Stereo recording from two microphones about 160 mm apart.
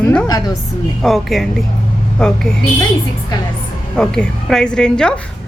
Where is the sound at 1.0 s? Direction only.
Centre (ahead or behind).